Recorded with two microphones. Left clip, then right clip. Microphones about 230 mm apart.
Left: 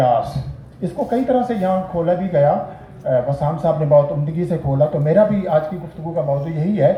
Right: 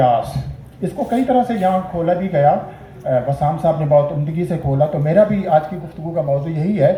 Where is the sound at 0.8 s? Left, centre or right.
Right.